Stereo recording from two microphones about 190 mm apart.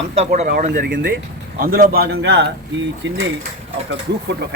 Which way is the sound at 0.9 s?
60° right (ahead or behind).